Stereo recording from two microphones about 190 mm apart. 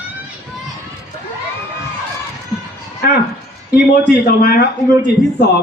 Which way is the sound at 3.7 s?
55° left (ahead or behind).